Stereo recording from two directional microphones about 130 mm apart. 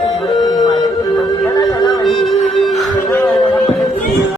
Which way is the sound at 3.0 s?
15° left (ahead or behind).